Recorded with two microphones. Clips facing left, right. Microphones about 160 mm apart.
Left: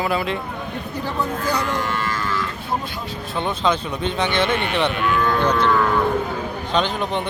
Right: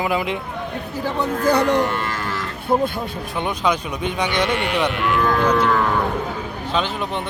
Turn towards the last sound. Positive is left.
turn(degrees=0)  # may be behind; listen again after turning